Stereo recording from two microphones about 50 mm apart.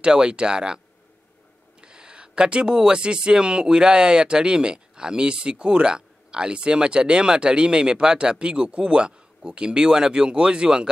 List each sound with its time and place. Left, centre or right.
0.0 s speech: centre
1.8 s speech: centre